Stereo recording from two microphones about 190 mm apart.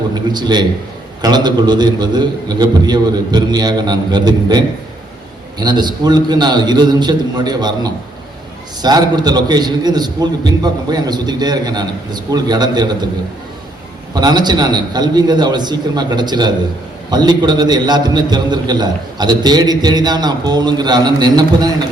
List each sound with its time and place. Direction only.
0.3 s a man's voice: 20° right (ahead or behind)
14.1 s a man's voice: 20° right (ahead or behind)